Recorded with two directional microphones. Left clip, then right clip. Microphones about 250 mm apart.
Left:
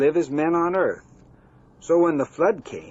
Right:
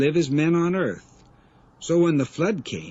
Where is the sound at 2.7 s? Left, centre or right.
Left.